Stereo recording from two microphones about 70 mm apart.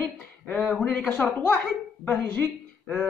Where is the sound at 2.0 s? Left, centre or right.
Left.